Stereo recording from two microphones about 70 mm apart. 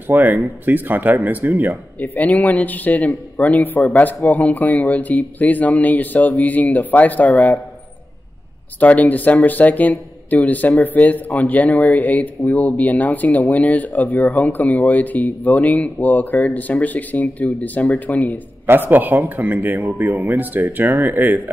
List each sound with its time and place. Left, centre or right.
0.0 s speech: right
2.0 s speech: left
8.7 s speech: left
18.7 s speech: right